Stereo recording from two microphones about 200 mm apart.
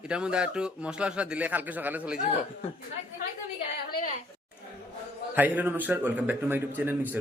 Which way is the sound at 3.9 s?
40° left (ahead or behind).